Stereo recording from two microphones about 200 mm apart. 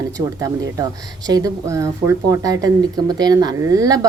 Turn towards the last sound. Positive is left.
turn(degrees=-15)  # may be behind; listen again after turning